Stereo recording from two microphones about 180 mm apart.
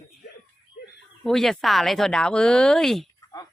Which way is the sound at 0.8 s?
55° left (ahead or behind).